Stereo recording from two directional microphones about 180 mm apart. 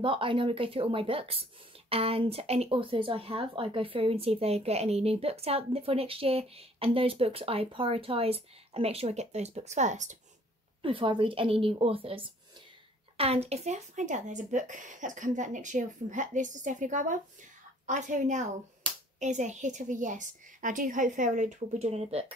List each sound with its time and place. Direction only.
0.0 s a woman's voice: 30° right (ahead or behind)
10.8 s a woman's voice: 30° right (ahead or behind)